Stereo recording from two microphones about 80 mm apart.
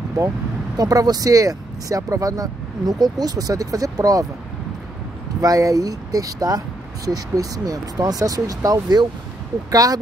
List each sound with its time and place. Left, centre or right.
0.7 s speech: right
5.4 s speech: right